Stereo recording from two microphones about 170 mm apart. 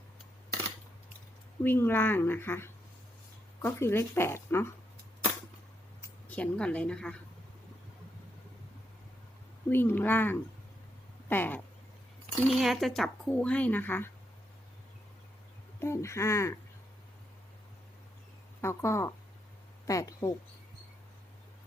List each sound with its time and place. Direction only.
1.6 s speech: 10° left (ahead or behind)
6.2 s speech: 10° left (ahead or behind)
9.6 s speech: 10° left (ahead or behind)
12.5 s speech: centre (ahead or behind)
15.8 s speech: 15° left (ahead or behind)
18.6 s speech: 15° left (ahead or behind)